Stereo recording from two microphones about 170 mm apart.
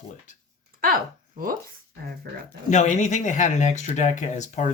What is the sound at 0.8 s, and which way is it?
Speech, 60° right (ahead or behind).